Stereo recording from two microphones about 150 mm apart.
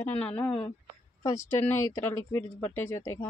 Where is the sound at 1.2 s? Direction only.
20° left (ahead or behind).